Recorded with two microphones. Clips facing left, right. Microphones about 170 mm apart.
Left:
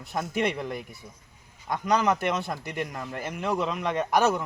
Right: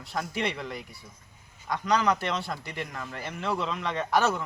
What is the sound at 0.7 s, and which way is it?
Speech, 50° left (ahead or behind).